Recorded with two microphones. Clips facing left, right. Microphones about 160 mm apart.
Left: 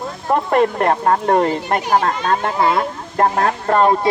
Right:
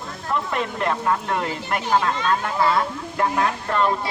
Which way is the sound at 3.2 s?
50° left (ahead or behind).